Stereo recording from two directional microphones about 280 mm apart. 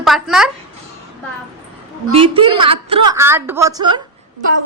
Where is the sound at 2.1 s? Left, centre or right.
Centre.